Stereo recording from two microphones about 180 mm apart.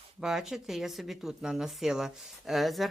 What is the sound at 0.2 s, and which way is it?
Speech, 5° right (ahead or behind).